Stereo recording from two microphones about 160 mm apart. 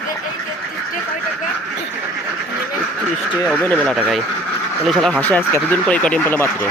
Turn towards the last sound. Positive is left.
turn(degrees=15)  # may be behind; listen again after turning